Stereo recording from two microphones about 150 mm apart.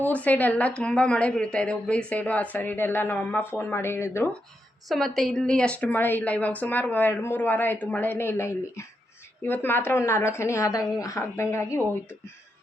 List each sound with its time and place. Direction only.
0.0 s a woman's voice: 10° left (ahead or behind)
4.9 s a woman's voice: centre (ahead or behind); by 11.9 s 15° left (ahead or behind)